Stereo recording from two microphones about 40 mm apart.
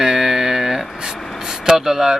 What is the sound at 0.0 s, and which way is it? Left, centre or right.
Speech, centre.